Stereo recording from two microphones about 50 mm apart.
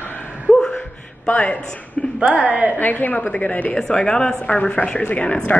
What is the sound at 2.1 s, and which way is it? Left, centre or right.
Speech, centre.